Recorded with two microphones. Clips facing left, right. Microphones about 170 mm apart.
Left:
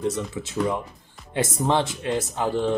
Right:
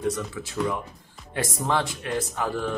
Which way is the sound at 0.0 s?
25° left (ahead or behind).